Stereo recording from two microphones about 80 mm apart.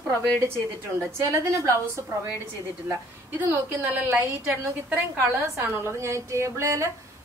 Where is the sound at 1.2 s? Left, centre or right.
Right.